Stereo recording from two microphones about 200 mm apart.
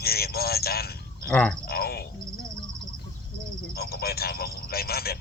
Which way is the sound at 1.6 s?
50° left (ahead or behind).